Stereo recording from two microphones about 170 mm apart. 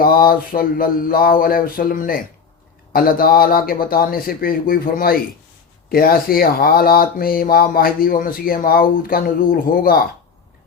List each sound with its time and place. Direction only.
0.0 s speech: 60° left (ahead or behind)